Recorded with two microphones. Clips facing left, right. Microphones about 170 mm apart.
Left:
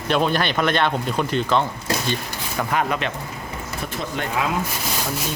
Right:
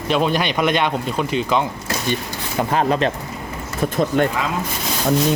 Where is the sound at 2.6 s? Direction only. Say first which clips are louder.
Right 5 dB; 30° right (ahead or behind).